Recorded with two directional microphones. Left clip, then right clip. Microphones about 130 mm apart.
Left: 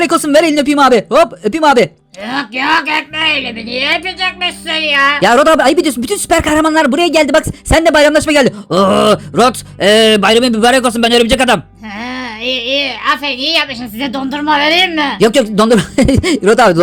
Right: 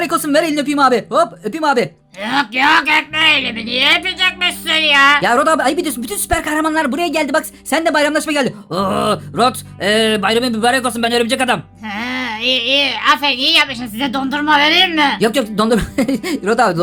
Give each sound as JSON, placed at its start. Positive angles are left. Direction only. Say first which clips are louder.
{"t": 0.0, "sound": "speech", "louder": "left 6 dB", "side_deg": 40}
{"t": 2.2, "sound": "a woman's voice", "louder": "right 2 dB", "side_deg": 0}
{"t": 5.2, "sound": "speech", "louder": "left 5 dB", "side_deg": 40}
{"t": 12.0, "sound": "a woman's voice", "louder": "right 1 dB", "side_deg": 5}
{"t": 15.2, "sound": "speech", "louder": "left 6 dB", "side_deg": 40}